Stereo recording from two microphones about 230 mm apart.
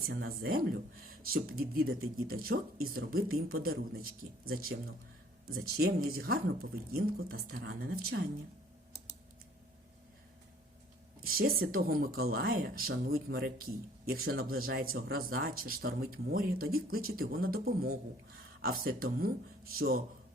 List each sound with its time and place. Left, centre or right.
0.1 s speech: right
5.7 s speech: right
11.2 s speech: right